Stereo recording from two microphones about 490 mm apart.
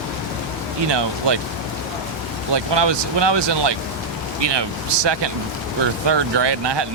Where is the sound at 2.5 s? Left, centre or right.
Right.